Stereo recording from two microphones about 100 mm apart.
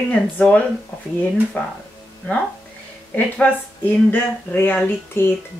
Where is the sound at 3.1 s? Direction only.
15° left (ahead or behind).